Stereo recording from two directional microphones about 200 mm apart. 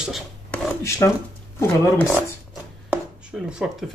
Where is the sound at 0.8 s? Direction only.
15° left (ahead or behind).